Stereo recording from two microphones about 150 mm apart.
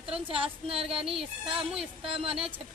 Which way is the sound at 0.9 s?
5° right (ahead or behind).